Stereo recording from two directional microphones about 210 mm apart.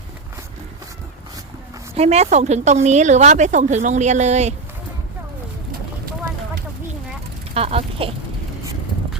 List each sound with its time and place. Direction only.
2.0 s a woman's voice: 30° right (ahead or behind)
7.5 s speech: 30° right (ahead or behind)